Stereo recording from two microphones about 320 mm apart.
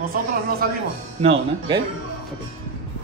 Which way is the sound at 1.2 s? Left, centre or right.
Centre.